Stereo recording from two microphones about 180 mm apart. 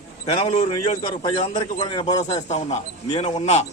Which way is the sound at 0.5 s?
35° left (ahead or behind).